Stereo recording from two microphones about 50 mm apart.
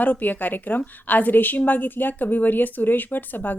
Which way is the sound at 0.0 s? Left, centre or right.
Left.